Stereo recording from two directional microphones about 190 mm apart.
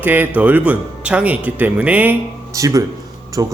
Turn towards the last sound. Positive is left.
turn(degrees=-20)  # may be behind; listen again after turning